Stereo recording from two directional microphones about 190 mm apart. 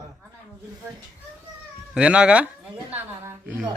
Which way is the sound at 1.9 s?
5° right (ahead or behind).